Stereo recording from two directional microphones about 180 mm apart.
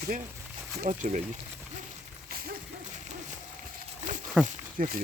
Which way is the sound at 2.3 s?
55° right (ahead or behind).